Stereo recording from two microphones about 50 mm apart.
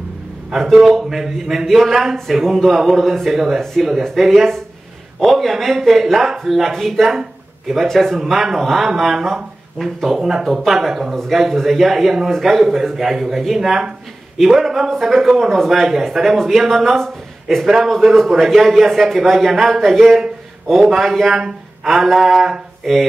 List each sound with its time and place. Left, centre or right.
0.5 s a man's voice: centre
3.6 s a man's voice: centre
8.2 s a man's voice: centre
13.6 s a man's voice: centre
17.0 s a sound: centre
17.8 s a man's voice: centre